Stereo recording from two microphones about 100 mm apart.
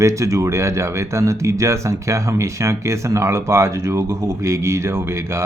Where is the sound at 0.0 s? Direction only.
30° right (ahead or behind).